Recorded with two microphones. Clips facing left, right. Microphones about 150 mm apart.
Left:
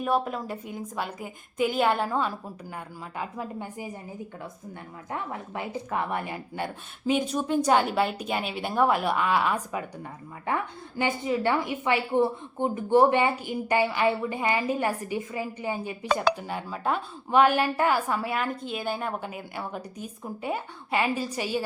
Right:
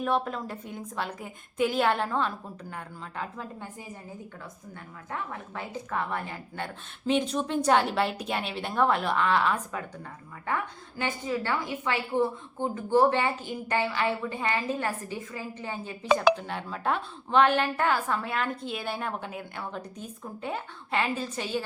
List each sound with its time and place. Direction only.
0.0 s a woman's voice: 5° left (ahead or behind)
5.1 s a woman's voice: 15° left (ahead or behind)
7.1 s a woman's voice: 5° left (ahead or behind)